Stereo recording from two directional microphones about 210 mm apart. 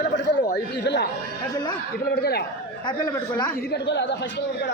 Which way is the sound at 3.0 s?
20° left (ahead or behind).